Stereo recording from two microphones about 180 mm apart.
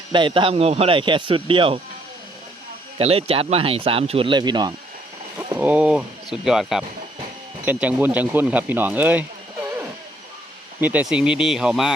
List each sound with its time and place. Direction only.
0.1 s speech: 25° right (ahead or behind)
3.0 s speech: 35° right (ahead or behind)
5.5 s speech: 10° right (ahead or behind)